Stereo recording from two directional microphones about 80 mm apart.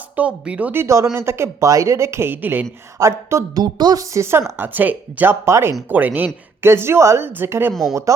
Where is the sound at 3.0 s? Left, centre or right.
Right.